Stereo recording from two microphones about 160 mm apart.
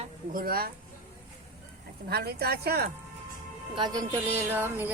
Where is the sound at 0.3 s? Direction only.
70° right (ahead or behind).